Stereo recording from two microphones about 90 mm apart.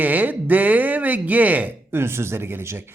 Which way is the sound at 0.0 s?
20° right (ahead or behind).